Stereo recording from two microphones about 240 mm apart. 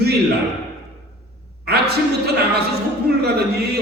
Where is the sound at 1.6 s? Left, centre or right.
Right.